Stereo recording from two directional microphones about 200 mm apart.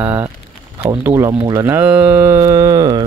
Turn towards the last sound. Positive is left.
turn(degrees=-20)  # may be behind; listen again after turning